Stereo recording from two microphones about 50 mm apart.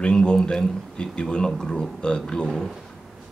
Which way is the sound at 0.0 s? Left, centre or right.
Centre.